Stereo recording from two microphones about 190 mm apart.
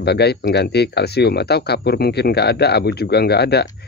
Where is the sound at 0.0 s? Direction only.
60° left (ahead or behind).